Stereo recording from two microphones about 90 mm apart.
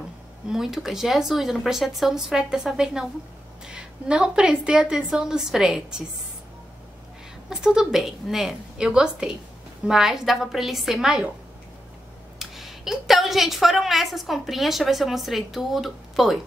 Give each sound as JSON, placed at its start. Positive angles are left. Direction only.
{"t": 0.5, "sound": "a woman's voice", "side_deg": -5}
{"t": 7.4, "sound": "a woman's voice", "side_deg": -5}
{"t": 12.4, "sound": "a woman's voice", "side_deg": -5}